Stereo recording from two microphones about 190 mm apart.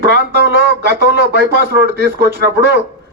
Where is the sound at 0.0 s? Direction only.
60° right (ahead or behind).